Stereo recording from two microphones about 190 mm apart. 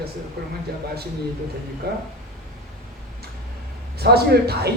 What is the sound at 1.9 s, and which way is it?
Speech, 60° right (ahead or behind).